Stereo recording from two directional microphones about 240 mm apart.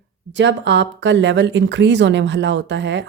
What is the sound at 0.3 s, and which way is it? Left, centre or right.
Speech, right.